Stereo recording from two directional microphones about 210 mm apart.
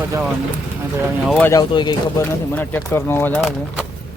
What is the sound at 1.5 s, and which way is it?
Speech, 20° left (ahead or behind).